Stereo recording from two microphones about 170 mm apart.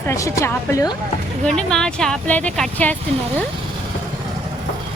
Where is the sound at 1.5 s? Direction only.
5° left (ahead or behind).